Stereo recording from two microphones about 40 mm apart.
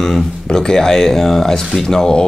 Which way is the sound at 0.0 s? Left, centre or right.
Centre.